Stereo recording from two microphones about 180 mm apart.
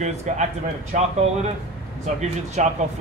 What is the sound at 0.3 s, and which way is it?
Speech, 40° right (ahead or behind).